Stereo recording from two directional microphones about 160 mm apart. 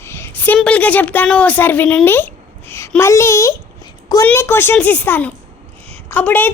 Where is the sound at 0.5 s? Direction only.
10° left (ahead or behind).